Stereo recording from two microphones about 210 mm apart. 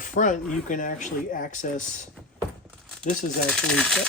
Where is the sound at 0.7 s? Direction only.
35° left (ahead or behind).